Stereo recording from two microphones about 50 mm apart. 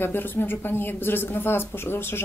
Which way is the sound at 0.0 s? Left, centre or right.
Left.